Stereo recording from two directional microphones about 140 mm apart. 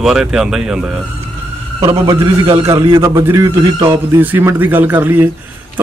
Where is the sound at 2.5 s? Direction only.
25° right (ahead or behind).